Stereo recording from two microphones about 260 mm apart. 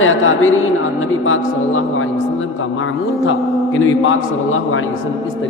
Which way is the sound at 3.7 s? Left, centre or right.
Left.